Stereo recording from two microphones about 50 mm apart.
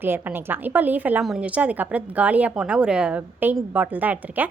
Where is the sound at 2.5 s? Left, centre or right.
Centre.